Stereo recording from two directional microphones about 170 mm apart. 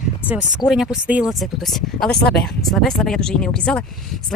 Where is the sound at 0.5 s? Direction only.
Centre (ahead or behind).